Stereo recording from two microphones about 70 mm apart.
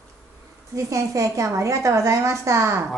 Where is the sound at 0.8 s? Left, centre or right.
Right.